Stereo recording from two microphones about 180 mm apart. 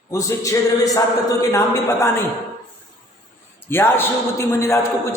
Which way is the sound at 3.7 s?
10° left (ahead or behind).